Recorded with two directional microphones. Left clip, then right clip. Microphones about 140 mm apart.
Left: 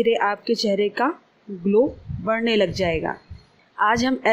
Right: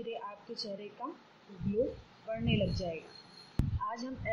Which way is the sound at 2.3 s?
90° left.